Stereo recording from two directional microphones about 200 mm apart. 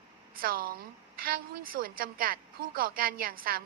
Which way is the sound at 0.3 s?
45° right (ahead or behind).